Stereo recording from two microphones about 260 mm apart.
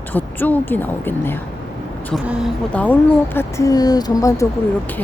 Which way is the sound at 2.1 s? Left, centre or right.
Centre.